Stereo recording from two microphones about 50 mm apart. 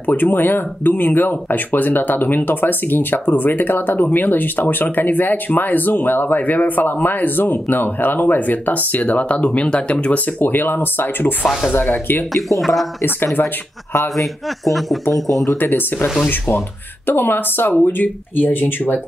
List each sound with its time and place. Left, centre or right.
0.0 s speech: left
12.4 s a man's voice: centre
13.0 s speech: left
14.1 s a man's voice: centre
15.5 s speech: left